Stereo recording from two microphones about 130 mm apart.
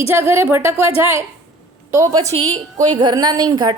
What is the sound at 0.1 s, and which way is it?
Speech, 20° right (ahead or behind).